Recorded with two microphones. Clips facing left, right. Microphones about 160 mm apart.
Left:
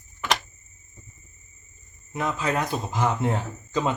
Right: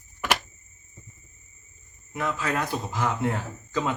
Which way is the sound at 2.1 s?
20° left (ahead or behind).